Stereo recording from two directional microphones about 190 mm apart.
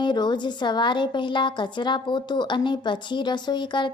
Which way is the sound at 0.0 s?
25° left (ahead or behind).